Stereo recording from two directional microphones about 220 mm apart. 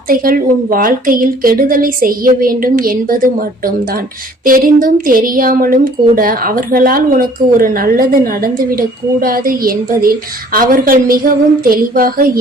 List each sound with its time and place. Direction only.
0.1 s a woman's voice: 40° right (ahead or behind)